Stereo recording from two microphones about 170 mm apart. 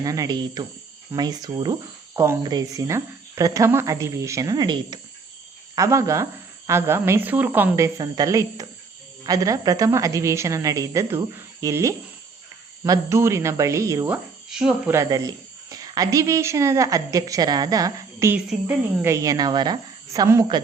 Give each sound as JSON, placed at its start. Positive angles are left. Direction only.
{"t": 0.0, "sound": "a woman's voice", "side_deg": -20}
{"t": 7.9, "sound": "a woman's voice", "side_deg": -20}
{"t": 15.7, "sound": "a woman's voice", "side_deg": -20}